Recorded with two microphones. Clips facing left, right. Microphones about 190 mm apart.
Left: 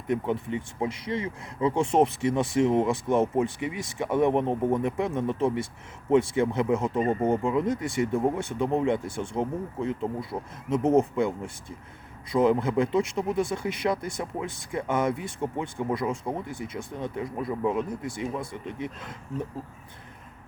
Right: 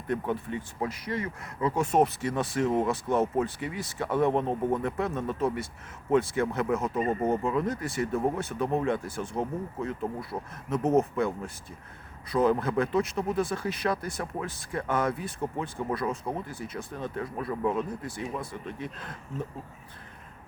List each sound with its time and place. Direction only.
0.1 s speech: 20° left (ahead or behind)
11.1 s speech: 15° left (ahead or behind)